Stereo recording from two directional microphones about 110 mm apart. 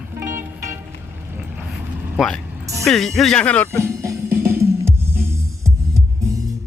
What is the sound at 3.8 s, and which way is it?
Music, 30° right (ahead or behind).